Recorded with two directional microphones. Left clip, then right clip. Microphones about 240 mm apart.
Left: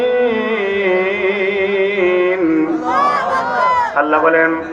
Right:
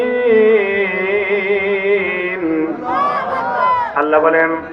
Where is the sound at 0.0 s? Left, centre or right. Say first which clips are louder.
Right 3 dB; left.